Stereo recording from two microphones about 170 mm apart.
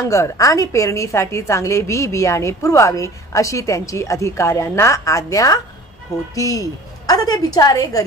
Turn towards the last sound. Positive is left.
turn(degrees=20)  # may be behind; listen again after turning